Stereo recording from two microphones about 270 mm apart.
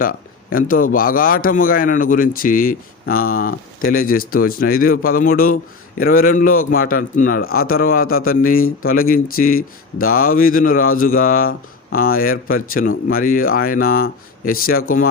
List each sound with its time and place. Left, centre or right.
0.0 s a man's voice: left